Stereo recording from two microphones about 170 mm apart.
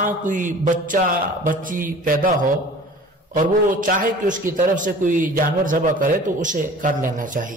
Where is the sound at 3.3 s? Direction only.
50° right (ahead or behind).